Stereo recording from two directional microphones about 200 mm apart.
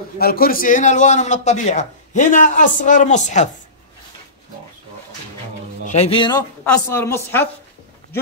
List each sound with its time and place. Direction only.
0.2 s a man's voice: 50° left (ahead or behind)
5.9 s speech: 30° left (ahead or behind)
6.6 s a woman's voice: 10° left (ahead or behind)